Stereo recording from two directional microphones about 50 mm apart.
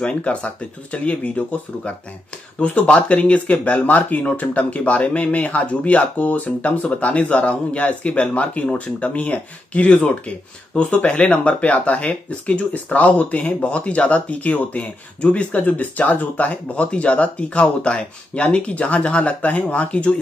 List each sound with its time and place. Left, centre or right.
0.0 s speech: left
2.6 s speech: left
15.8 s speech: left